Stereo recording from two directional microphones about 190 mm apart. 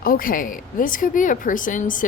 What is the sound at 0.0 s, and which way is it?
A woman's voice, 50° left (ahead or behind).